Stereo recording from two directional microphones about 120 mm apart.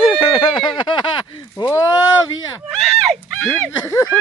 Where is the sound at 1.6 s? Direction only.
25° left (ahead or behind).